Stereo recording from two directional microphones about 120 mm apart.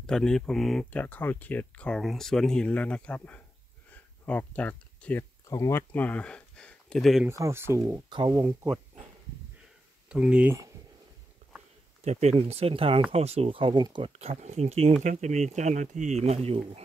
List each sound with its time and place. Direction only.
0.0 s speech: 5° left (ahead or behind)
0.9 s speech: 15° left (ahead or behind)
3.9 s a sound: 15° left (ahead or behind)
5.5 s speech: 25° left (ahead or behind); by 7.2 s centre (ahead or behind)
7.2 s speech: 25° right (ahead or behind)
10.0 s speech: 10° right (ahead or behind)
12.0 s speech: 65° right (ahead or behind); by 13.8 s 45° right (ahead or behind)
14.0 s speech: 55° right (ahead or behind)
15.0 s speech: 75° right (ahead or behind); by 16.8 s 55° right (ahead or behind)